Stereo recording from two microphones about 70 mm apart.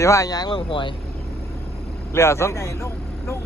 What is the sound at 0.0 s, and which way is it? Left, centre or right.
Speech, left.